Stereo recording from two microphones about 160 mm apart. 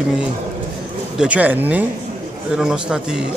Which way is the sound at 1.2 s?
10° right (ahead or behind).